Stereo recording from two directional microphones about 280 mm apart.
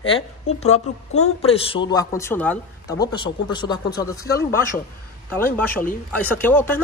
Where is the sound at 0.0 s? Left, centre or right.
Left.